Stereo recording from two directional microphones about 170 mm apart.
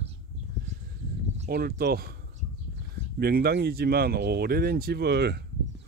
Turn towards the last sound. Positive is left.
turn(degrees=-75)  # may be behind; listen again after turning